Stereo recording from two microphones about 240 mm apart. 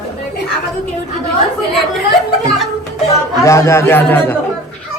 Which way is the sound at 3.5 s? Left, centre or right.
Centre.